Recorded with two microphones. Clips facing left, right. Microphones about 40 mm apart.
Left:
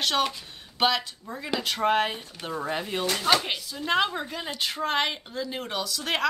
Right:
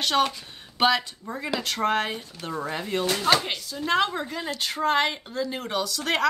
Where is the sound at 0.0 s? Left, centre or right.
Centre.